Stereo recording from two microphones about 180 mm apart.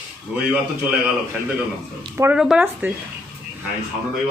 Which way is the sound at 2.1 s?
15° right (ahead or behind).